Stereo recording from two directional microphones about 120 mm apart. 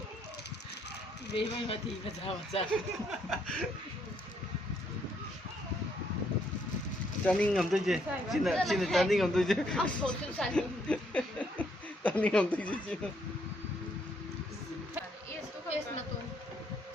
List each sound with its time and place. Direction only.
1.4 s speech: 50° left (ahead or behind)
3.1 s speech: 5° left (ahead or behind)
7.3 s speech: 10° left (ahead or behind)